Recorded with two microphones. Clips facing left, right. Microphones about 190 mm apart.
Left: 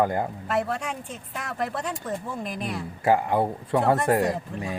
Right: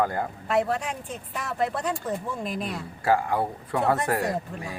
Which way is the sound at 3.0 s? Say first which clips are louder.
Left 2 dB; 20° left (ahead or behind).